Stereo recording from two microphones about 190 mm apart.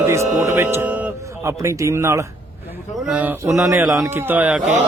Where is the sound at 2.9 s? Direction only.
5° right (ahead or behind).